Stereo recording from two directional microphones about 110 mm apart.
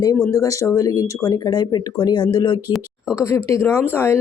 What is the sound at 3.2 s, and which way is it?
Speech, 25° left (ahead or behind).